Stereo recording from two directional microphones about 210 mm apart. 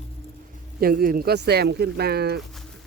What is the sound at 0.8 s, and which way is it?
Speech, 45° right (ahead or behind).